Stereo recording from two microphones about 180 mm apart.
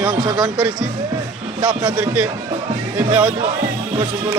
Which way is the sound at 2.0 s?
5° right (ahead or behind).